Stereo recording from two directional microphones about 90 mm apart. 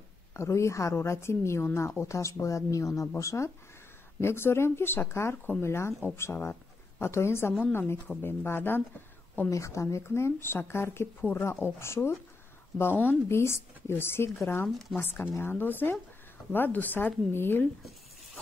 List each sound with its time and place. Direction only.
0.3 s a woman's voice: 30° left (ahead or behind)
9.5 s speech: 35° left (ahead or behind)
14.7 s speech: centre (ahead or behind)
15.0 s speech: 25° left (ahead or behind)